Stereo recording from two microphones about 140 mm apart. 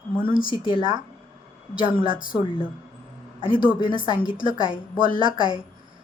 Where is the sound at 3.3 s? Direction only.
35° left (ahead or behind).